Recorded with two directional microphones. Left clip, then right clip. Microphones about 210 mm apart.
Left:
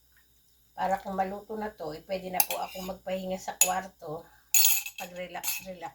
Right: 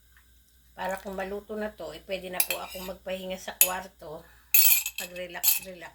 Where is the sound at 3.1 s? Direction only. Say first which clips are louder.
Left 1 dB; 25° right (ahead or behind).